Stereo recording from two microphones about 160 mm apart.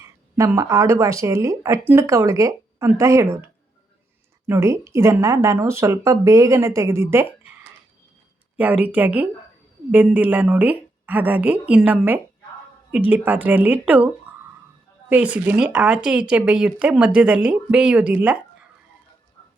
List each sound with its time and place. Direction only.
0.0 s speech: 20° right (ahead or behind)
4.4 s speech: 15° right (ahead or behind)
8.5 s speech: 10° right (ahead or behind)
15.1 s speech: 10° right (ahead or behind)